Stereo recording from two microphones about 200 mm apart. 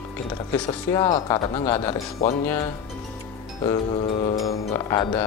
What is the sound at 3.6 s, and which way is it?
Speech, 25° left (ahead or behind).